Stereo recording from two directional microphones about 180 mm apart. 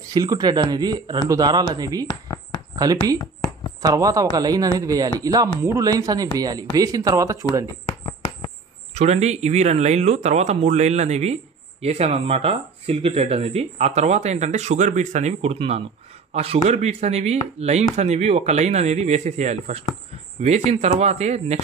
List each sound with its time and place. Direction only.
0.1 s a man's voice: 20° right (ahead or behind)
8.9 s speech: 35° right (ahead or behind)